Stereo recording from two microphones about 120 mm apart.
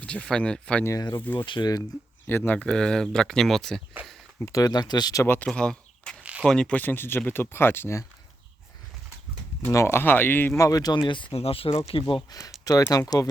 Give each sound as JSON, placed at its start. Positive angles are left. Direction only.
{"t": 0.0, "sound": "speech", "side_deg": 10}
{"t": 0.9, "sound": "speech", "side_deg": 25}
{"t": 1.2, "sound": "speech", "side_deg": 15}
{"t": 1.5, "sound": "speech", "side_deg": 40}
{"t": 2.2, "sound": "speech", "side_deg": 15}
{"t": 4.4, "sound": "speech", "side_deg": 25}
{"t": 5.2, "sound": "speech", "side_deg": 15}
{"t": 5.5, "sound": "speech", "side_deg": 5}
{"t": 9.6, "sound": "speech", "side_deg": 20}
{"t": 10.6, "sound": "speech", "side_deg": 30}
{"t": 12.9, "sound": "speech", "side_deg": 30}